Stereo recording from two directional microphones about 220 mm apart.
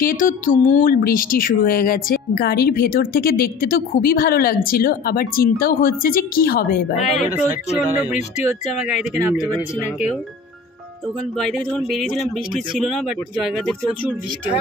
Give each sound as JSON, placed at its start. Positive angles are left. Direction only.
{"t": 0.0, "sound": "speech", "side_deg": 40}
{"t": 8.8, "sound": "speech", "side_deg": 35}
{"t": 11.3, "sound": "a man's voice", "side_deg": 5}